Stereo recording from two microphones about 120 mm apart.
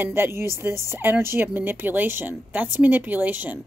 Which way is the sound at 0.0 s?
20° right (ahead or behind).